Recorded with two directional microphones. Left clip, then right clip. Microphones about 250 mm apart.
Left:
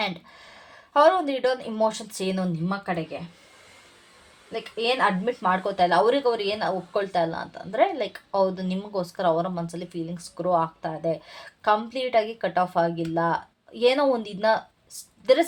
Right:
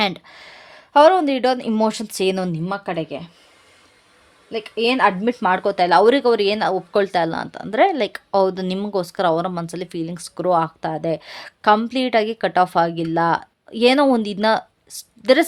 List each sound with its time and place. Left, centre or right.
0.0 s speech: right
4.5 s speech: right